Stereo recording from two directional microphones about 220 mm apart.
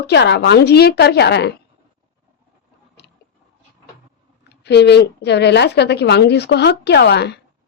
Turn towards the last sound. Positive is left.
turn(degrees=50)  # may be behind; listen again after turning